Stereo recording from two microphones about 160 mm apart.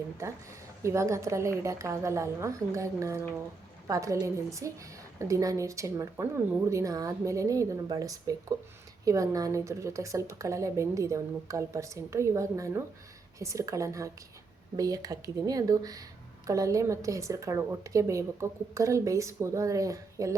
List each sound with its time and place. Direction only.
0.8 s a woman's voice: 20° right (ahead or behind)